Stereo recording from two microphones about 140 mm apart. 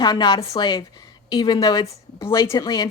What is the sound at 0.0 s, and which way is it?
A woman's voice, 30° left (ahead or behind).